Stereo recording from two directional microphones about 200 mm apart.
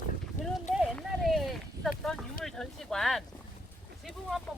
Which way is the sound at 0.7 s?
Centre (ahead or behind).